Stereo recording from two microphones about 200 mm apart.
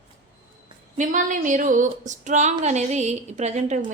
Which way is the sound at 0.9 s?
40° right (ahead or behind).